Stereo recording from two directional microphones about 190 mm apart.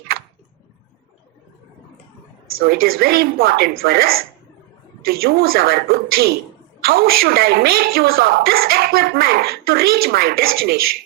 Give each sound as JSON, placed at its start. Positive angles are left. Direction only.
{"t": 2.8, "sound": "a woman's voice", "side_deg": -55}